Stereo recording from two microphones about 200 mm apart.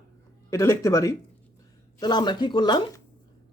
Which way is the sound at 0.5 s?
15° left (ahead or behind).